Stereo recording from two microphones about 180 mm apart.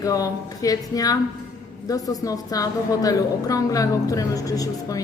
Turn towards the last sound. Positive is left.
turn(degrees=20)  # may be behind; listen again after turning